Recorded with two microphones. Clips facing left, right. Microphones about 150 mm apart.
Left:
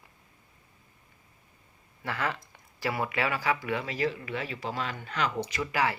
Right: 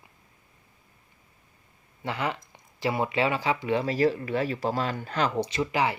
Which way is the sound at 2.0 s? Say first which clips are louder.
Right 2 dB; 20° right (ahead or behind).